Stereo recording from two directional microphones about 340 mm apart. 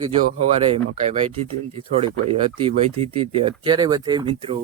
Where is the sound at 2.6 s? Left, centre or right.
Centre.